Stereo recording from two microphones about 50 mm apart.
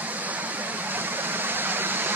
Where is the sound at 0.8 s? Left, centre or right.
Right.